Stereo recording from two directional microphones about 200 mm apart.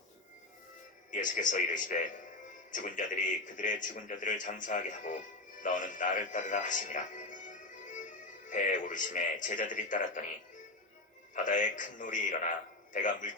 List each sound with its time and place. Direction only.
1.1 s a man's voice: 40° left (ahead or behind)
11.3 s a man's voice: 40° left (ahead or behind)